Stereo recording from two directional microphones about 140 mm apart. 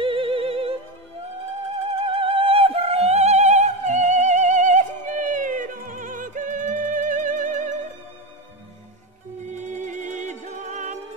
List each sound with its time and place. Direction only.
0.0 s music: 40° right (ahead or behind)
2.0 s music: 40° right (ahead or behind); by 7.7 s 65° right (ahead or behind)
9.5 s music: 60° right (ahead or behind)